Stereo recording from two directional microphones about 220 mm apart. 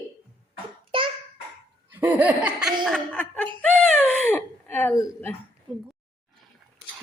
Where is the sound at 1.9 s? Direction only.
5° right (ahead or behind).